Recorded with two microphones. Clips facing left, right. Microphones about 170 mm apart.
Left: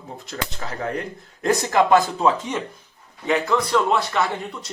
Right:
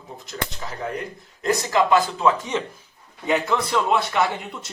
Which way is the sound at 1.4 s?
50° left (ahead or behind).